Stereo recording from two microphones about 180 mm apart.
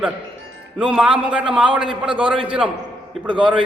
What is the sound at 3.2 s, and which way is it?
Speech, 25° right (ahead or behind).